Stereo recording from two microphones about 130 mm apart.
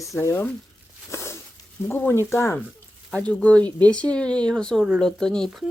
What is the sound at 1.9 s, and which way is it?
Speech, 20° left (ahead or behind).